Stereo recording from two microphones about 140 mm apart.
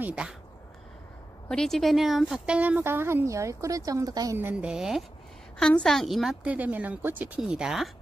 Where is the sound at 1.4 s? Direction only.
5° left (ahead or behind); by 4.3 s 25° right (ahead or behind).